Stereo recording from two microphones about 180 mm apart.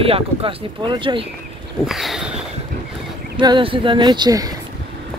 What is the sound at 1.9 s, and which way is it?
Speech, centre (ahead or behind).